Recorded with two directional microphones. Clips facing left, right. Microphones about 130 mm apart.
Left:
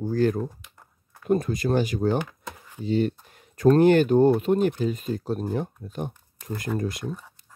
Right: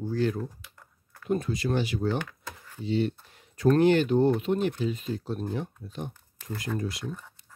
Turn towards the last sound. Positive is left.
turn(degrees=10)  # may be behind; listen again after turning